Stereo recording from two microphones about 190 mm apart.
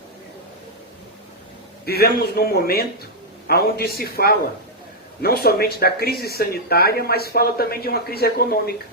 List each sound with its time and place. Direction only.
1.8 s speech: 55° left (ahead or behind)